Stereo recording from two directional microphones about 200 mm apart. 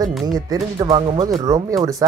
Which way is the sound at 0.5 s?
20° right (ahead or behind).